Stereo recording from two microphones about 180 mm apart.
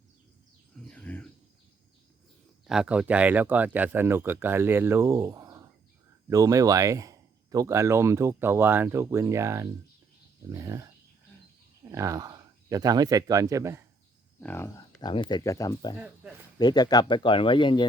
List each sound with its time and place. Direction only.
0.8 s speech: 5° left (ahead or behind)
2.6 s speech: 5° right (ahead or behind)
11.9 s speech: 15° right (ahead or behind)
14.4 s speech: 15° left (ahead or behind)
15.1 s speech: 25° left (ahead or behind)
16.0 s speech: 5° right (ahead or behind)
16.6 s speech: 25° left (ahead or behind)